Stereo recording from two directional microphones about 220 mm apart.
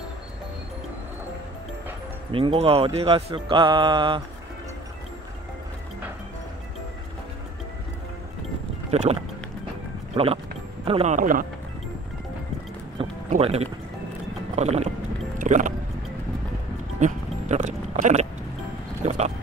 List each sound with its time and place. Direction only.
2.3 s speech: 25° right (ahead or behind)
8.9 s speech: 30° right (ahead or behind)
13.3 s speech: 30° right (ahead or behind)
15.3 s vehicle: 35° right (ahead or behind)
17.0 s music: 35° right (ahead or behind)
19.0 s a sound: 30° right (ahead or behind)